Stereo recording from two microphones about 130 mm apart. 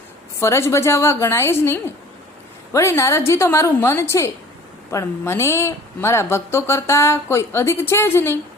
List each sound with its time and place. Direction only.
0.3 s speech: 20° left (ahead or behind)